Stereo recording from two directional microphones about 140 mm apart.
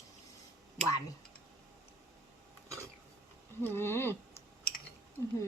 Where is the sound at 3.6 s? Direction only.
15° left (ahead or behind).